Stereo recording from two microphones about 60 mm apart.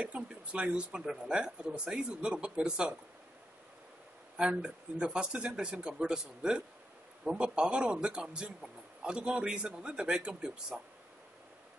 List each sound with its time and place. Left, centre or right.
0.0 s speech: centre
4.4 s speech: centre